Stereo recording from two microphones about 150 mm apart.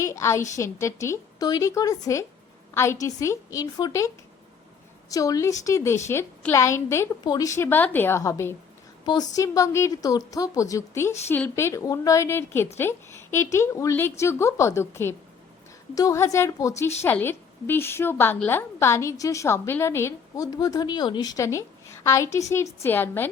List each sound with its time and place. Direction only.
0.0 s a woman's voice: 20° left (ahead or behind)